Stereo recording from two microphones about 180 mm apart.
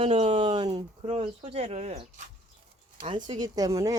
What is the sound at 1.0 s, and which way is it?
Speech, 35° right (ahead or behind).